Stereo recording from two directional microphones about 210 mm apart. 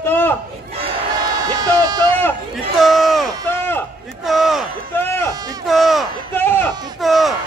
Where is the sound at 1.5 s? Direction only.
20° right (ahead or behind).